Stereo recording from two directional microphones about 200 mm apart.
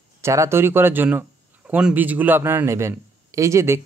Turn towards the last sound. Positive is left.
turn(degrees=-15)  # may be behind; listen again after turning